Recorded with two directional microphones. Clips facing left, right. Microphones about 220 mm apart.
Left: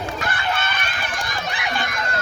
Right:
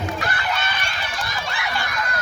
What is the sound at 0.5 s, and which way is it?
Run, 50° left (ahead or behind).